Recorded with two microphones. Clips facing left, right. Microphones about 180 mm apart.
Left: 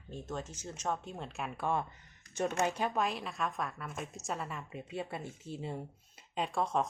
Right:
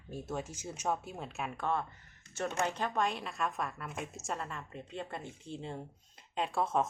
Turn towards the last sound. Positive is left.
turn(degrees=0)  # may be behind; listen again after turning